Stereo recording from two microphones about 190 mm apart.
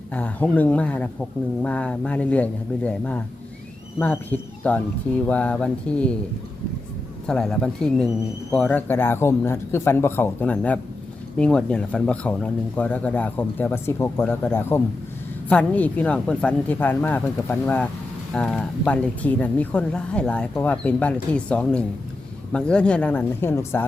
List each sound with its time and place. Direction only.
0.1 s speech: 10° left (ahead or behind)
7.3 s speech: 5° left (ahead or behind)